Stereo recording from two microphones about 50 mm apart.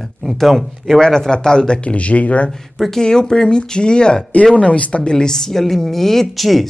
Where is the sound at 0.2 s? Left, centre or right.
Centre; by 2.5 s left.